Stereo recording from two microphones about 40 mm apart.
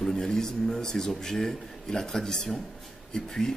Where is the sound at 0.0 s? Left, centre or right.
Centre.